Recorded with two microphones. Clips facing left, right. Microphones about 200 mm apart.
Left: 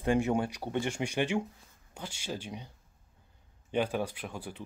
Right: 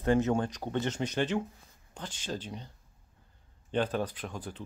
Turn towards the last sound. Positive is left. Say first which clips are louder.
# right 1 dB
turn(degrees=10)  # may be behind; listen again after turning